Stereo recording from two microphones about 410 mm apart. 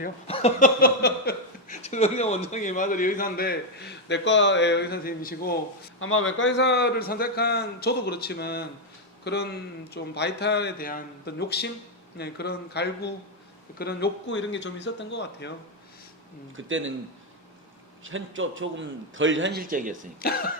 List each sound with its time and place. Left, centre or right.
0.0 s speech: centre
16.6 s a man's voice: right
18.0 s a man's voice: right
20.2 s speech: left